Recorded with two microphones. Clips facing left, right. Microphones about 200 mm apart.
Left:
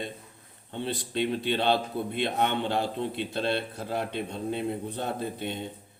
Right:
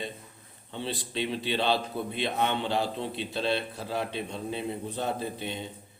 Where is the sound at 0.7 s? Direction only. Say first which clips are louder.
Left 2 dB; 55° left (ahead or behind).